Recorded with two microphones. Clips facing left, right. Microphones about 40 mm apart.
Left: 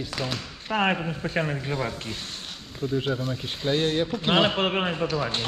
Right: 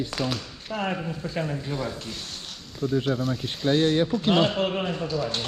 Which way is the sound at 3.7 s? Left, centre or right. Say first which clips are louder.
Right 3 dB; left.